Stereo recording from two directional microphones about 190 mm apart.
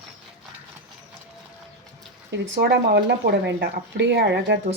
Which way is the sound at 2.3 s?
60° right (ahead or behind).